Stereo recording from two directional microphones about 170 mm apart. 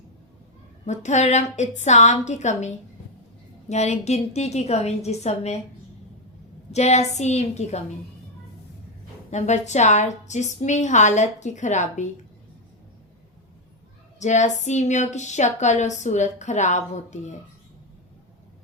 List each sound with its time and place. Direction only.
0.9 s a woman's voice: 45° left (ahead or behind)
6.7 s a woman's voice: 40° left (ahead or behind)
9.3 s speech: 45° left (ahead or behind)
14.2 s speech: 45° left (ahead or behind)